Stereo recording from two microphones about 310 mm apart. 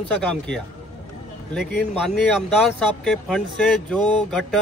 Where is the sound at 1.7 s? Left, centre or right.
Left.